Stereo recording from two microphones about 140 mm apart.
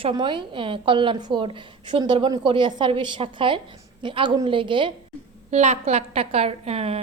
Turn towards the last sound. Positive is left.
turn(degrees=-45)  # may be behind; listen again after turning